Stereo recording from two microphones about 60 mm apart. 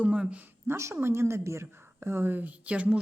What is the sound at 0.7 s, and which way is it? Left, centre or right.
A woman's voice, right.